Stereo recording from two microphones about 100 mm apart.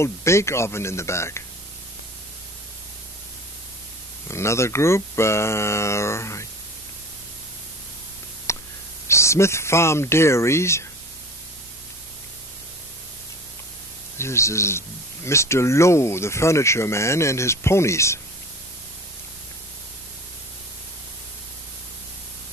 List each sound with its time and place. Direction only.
0.0 s speech: 30° left (ahead or behind)
4.3 s speech: 30° left (ahead or behind)
8.5 s a sound: 30° left (ahead or behind)
9.0 s speech: 30° left (ahead or behind)
14.1 s speech: 25° left (ahead or behind)